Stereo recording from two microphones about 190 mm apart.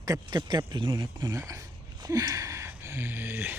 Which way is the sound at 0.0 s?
20° right (ahead or behind).